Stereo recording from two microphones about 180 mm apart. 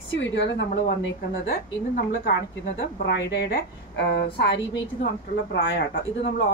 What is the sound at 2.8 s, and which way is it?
A woman's voice, 80° left.